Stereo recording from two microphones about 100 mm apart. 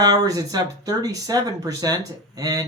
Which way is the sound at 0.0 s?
40° right (ahead or behind).